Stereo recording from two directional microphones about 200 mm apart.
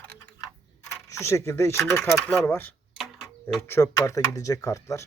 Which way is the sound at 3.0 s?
Centre (ahead or behind).